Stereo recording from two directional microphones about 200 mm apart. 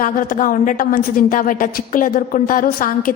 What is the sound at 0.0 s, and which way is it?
A woman's voice, 40° left (ahead or behind).